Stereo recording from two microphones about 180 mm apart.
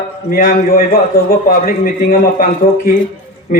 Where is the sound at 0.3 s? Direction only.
50° left (ahead or behind).